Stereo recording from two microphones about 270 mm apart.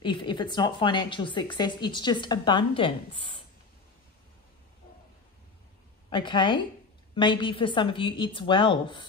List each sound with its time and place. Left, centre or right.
0.0 s a woman's voice: centre
6.0 s a woman's voice: centre